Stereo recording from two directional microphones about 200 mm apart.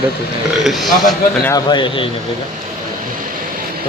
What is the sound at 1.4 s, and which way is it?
Speech, 20° left (ahead or behind).